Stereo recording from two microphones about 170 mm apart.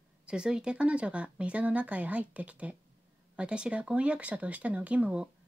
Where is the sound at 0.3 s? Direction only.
5° right (ahead or behind).